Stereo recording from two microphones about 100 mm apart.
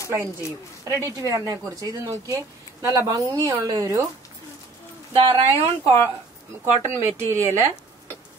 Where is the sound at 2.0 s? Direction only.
35° right (ahead or behind).